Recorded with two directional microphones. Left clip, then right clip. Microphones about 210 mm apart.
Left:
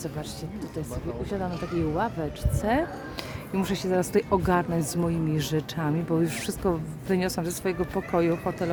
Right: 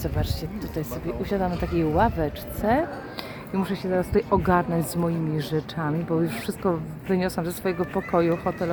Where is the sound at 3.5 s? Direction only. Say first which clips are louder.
Right 1 dB; 15° left (ahead or behind).